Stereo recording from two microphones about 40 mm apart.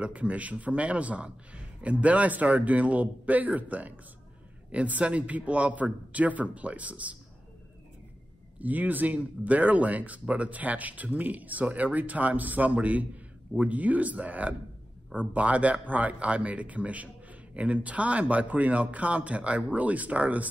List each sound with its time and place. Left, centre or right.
0.0 s speech: right
8.5 s speech: right